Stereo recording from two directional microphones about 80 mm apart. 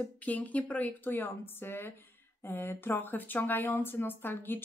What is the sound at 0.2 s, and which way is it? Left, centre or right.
Speech, centre.